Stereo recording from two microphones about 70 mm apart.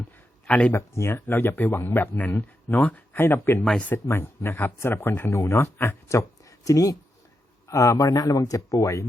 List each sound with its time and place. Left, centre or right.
0.4 s speech: centre
0.7 s a man's voice: left
5.3 s a man's voice: left
6.1 s a sound: left
7.7 s speech: left